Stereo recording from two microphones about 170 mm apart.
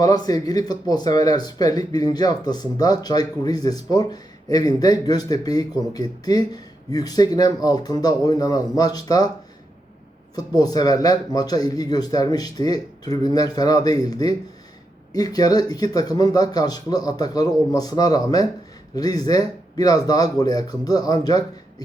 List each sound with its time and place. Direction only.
0.0 s speech: 20° left (ahead or behind)
10.3 s speech: 20° left (ahead or behind)